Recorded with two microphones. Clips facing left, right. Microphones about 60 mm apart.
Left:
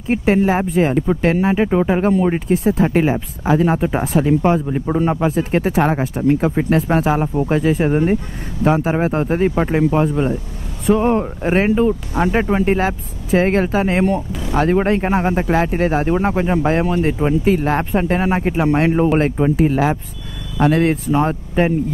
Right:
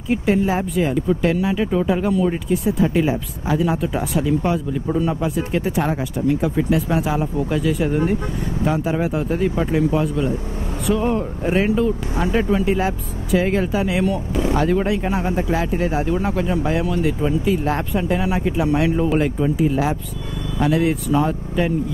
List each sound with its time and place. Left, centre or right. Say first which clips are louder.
0.1 s speech: left 3 dB; left